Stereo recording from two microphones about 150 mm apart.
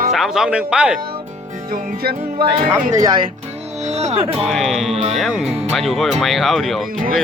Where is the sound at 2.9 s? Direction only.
25° right (ahead or behind).